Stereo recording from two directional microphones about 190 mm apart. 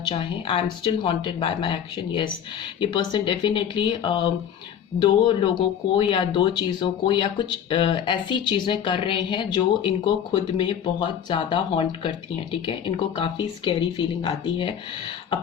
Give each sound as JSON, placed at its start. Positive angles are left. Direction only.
{"t": 0.0, "sound": "speech", "side_deg": 25}